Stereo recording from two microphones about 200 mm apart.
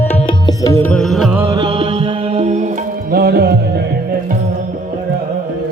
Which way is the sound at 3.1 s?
50° right (ahead or behind).